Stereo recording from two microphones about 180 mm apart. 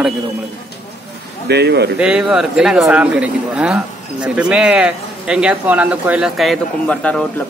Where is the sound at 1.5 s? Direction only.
65° right (ahead or behind).